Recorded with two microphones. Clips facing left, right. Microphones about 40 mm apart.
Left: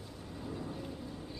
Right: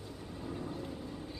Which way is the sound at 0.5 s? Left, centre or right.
Centre.